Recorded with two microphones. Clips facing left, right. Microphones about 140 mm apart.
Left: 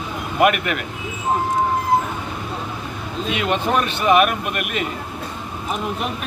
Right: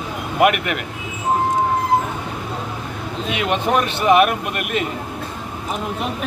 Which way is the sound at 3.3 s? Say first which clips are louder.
Right 1 dB; 20° right (ahead or behind).